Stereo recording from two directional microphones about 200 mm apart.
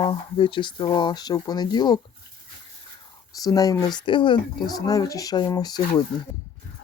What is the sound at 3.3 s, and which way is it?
Speech, 20° left (ahead or behind).